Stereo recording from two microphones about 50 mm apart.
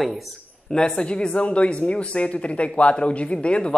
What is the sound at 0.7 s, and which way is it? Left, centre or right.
Speech, centre.